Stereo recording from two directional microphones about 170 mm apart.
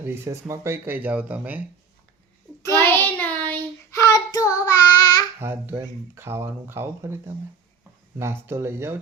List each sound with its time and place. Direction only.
0.0 s speech: 15° right (ahead or behind)
2.6 s child singing: 15° left (ahead or behind)
5.4 s speech: 15° right (ahead or behind)